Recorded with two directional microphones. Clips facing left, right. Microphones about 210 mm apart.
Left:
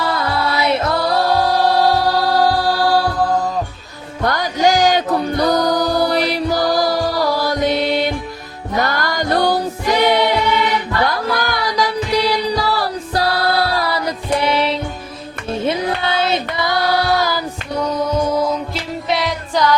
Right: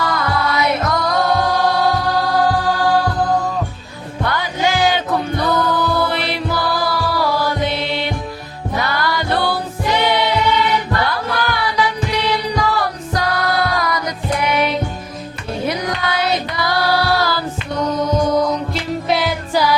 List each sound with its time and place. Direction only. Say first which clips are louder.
0.0 s music: even; 30° left (ahead or behind)
4.2 s music: left 3 dB; 40° left (ahead or behind)
11.3 s music: even; 40° left (ahead or behind); by 17.4 s 20° left (ahead or behind)
18.2 s music: right 1 dB; 5° left (ahead or behind)